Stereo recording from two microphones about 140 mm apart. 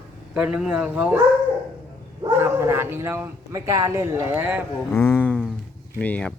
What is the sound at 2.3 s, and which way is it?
Speech, 15° right (ahead or behind).